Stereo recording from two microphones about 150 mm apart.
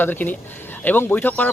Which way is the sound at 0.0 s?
15° left (ahead or behind).